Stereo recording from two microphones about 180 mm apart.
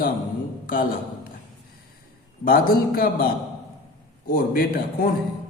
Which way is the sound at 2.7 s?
55° left (ahead or behind).